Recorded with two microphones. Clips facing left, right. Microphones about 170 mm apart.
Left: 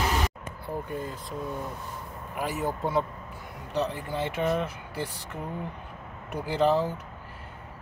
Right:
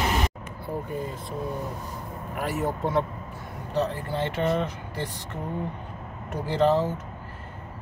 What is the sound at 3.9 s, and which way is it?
Speech, 10° left (ahead or behind).